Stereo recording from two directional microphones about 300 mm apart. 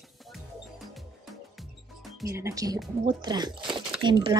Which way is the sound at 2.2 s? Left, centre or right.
Centre.